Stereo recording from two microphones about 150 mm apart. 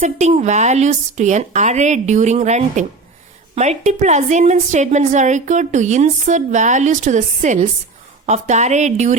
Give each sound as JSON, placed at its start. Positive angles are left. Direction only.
{"t": 0.0, "sound": "a woman's voice", "side_deg": -45}